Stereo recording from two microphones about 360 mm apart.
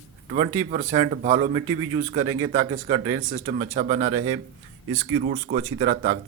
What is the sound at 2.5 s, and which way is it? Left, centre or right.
Speech, centre.